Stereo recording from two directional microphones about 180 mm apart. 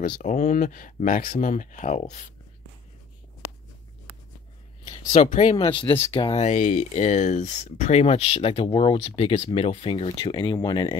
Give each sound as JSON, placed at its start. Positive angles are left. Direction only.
{"t": 0.2, "sound": "speech", "side_deg": 45}
{"t": 4.8, "sound": "a sound", "side_deg": 25}
{"t": 5.2, "sound": "speech", "side_deg": 35}